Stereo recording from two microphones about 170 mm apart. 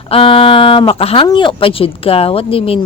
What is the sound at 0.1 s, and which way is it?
Speech, 30° left (ahead or behind).